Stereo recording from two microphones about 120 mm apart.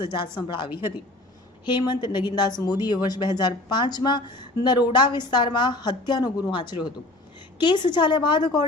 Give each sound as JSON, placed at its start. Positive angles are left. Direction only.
{"t": 0.0, "sound": "a woman's voice", "side_deg": 40}